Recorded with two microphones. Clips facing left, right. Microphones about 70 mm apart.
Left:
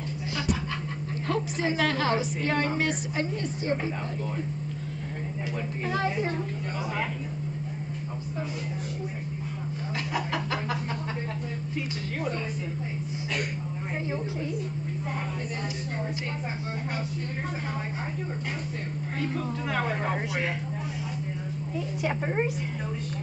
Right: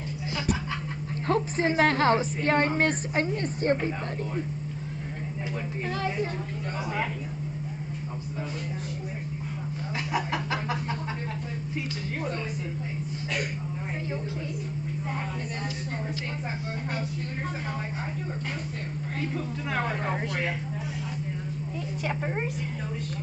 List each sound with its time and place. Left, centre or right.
1.2 s a woman's voice: right
10.1 s chicken: centre
19.8 s speech: centre
22.0 s speech: centre